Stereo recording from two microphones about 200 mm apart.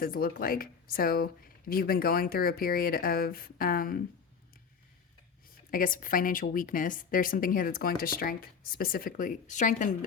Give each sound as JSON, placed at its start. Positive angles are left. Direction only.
{"t": 0.0, "sound": "speech", "side_deg": 45}
{"t": 5.7, "sound": "speech", "side_deg": 45}